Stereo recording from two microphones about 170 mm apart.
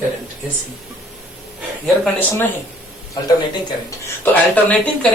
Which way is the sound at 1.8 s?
Centre (ahead or behind).